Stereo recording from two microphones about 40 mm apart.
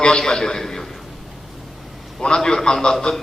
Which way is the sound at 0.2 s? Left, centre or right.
Centre.